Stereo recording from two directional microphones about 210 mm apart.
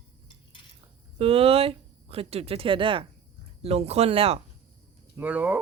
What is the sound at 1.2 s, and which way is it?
Speech, 30° right (ahead or behind).